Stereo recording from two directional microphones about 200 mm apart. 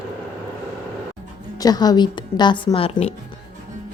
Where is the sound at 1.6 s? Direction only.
20° left (ahead or behind).